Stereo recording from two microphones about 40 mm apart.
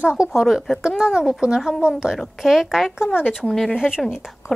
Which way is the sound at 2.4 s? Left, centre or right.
Centre.